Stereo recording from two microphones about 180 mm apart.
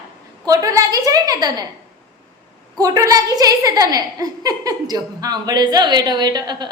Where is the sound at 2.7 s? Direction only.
20° right (ahead or behind).